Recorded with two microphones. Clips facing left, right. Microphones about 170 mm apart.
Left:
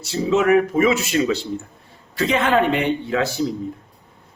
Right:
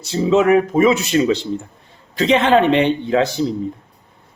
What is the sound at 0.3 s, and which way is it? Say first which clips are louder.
Speech: right 3 dB; 30° right (ahead or behind).